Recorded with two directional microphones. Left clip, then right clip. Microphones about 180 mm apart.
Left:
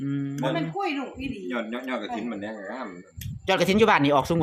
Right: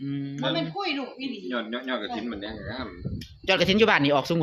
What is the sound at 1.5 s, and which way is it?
Speech, 25° left (ahead or behind).